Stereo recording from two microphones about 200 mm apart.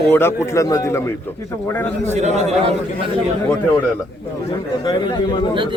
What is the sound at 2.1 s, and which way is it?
Speech, 35° right (ahead or behind).